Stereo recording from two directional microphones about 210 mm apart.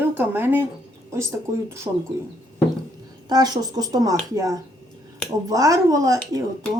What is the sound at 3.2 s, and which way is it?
A woman's voice, 20° right (ahead or behind).